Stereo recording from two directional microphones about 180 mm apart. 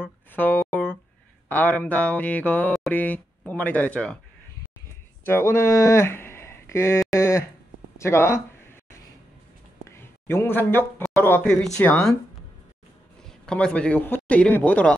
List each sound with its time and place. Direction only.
0.3 s music: 10° left (ahead or behind)
1.5 s speech: 10° left (ahead or behind)
5.2 s speech: 15° left (ahead or behind)
7.2 s a sound: 15° left (ahead or behind)
8.0 s speech: 15° left (ahead or behind)
9.8 s a sound: 15° left (ahead or behind)
11.1 s speech: 10° left (ahead or behind)
13.2 s a man's voice: 5° left (ahead or behind)